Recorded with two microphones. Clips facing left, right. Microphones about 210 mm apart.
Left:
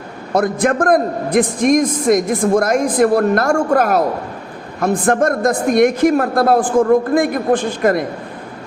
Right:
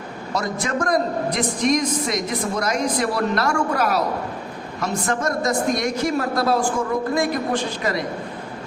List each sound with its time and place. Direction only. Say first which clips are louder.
0.3 s a man's voice: left 9 dB; 55° left (ahead or behind)